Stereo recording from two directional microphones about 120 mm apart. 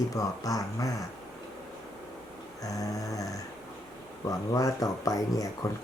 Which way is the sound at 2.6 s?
30° left (ahead or behind).